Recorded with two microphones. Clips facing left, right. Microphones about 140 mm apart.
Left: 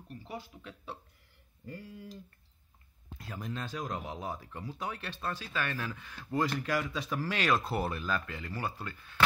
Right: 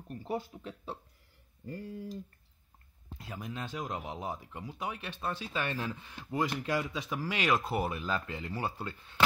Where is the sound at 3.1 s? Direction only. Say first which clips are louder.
Left 1 dB; 15° right (ahead or behind).